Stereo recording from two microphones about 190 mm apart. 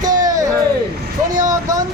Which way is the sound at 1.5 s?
20° right (ahead or behind).